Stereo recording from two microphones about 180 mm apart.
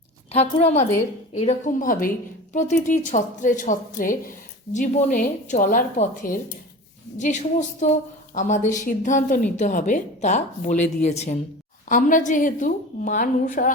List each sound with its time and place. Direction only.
0.3 s a woman's voice: 35° left (ahead or behind)